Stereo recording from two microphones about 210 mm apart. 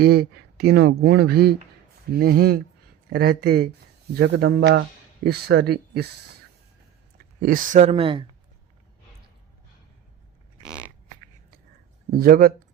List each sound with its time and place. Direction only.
0.0 s speech: 50° right (ahead or behind)
7.4 s speech: 40° right (ahead or behind)
12.1 s speech: 45° right (ahead or behind)